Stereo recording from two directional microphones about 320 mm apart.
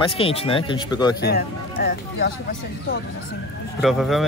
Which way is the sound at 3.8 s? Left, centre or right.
Centre.